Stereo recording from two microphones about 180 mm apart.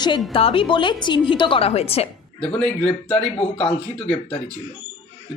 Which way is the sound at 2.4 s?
5° left (ahead or behind).